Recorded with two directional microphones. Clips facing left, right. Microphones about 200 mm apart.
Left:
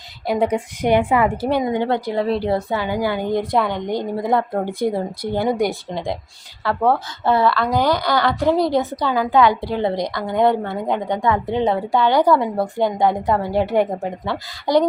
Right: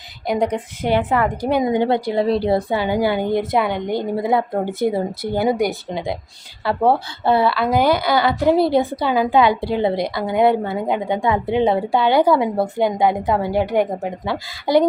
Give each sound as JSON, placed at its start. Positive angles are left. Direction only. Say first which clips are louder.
{"t": 0.3, "sound": "a woman's voice", "louder": "left 1 dB", "side_deg": 5}
{"t": 1.6, "sound": "a woman's voice", "louder": "right 2 dB", "side_deg": -15}
{"t": 3.5, "sound": "a woman's voice", "louder": "right 1 dB", "side_deg": -5}